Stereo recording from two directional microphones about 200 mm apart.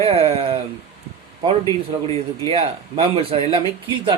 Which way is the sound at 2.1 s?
25° right (ahead or behind).